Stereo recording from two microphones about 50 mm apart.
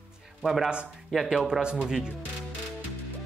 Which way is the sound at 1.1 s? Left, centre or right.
Centre.